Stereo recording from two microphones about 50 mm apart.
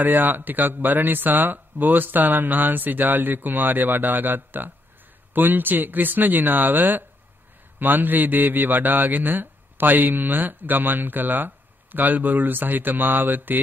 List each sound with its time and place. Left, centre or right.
0.0 s a man's voice: right